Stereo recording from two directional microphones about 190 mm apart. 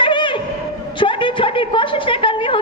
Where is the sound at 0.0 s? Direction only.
25° left (ahead or behind).